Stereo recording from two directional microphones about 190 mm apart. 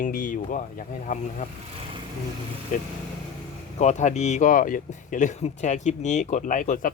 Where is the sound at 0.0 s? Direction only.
45° left (ahead or behind).